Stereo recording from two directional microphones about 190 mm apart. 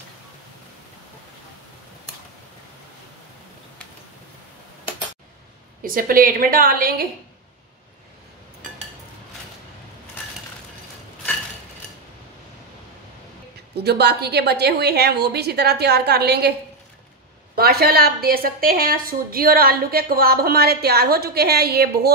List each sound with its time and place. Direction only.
5.8 s a woman's voice: 50° right (ahead or behind)
13.7 s a woman's voice: 60° right (ahead or behind)
17.6 s a woman's voice: 55° right (ahead or behind)